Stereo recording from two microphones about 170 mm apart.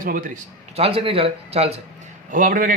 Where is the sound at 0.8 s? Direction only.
35° right (ahead or behind).